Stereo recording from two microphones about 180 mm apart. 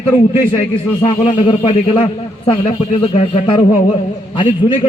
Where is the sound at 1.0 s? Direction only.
30° left (ahead or behind).